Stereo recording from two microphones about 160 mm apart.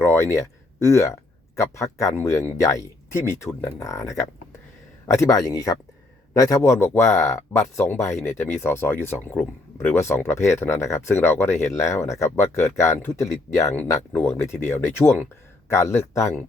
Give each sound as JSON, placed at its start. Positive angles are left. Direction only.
{"t": 0.0, "sound": "a man's voice", "side_deg": 15}
{"t": 14.4, "sound": "speech", "side_deg": 50}
{"t": 14.7, "sound": "speech", "side_deg": 15}